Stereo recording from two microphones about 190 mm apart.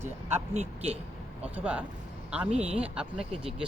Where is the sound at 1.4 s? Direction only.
10° right (ahead or behind).